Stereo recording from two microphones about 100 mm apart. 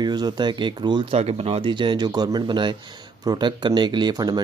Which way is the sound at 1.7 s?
50° right (ahead or behind).